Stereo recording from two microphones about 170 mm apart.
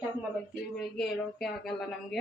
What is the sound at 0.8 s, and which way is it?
A woman's voice, centre (ahead or behind).